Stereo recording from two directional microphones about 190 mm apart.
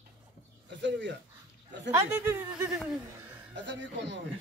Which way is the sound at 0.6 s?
70° right (ahead or behind).